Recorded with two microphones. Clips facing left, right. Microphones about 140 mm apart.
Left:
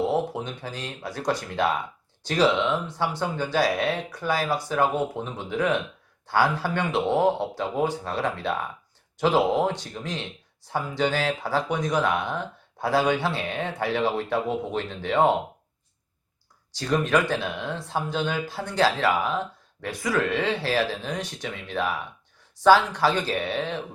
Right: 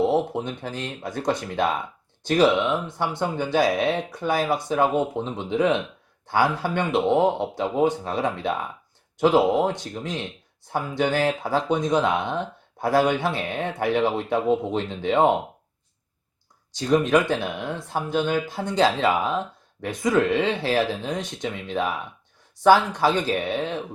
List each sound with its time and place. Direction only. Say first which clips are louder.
0.1 s speech: right 3 dB; 20° right (ahead or behind)
16.7 s speech: right 3 dB; 15° right (ahead or behind)